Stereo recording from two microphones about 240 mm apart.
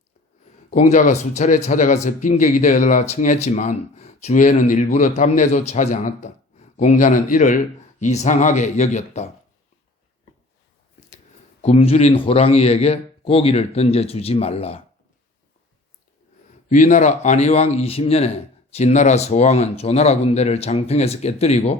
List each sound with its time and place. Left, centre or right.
0.7 s a man's voice: left
11.6 s a man's voice: left
16.6 s a man's voice: left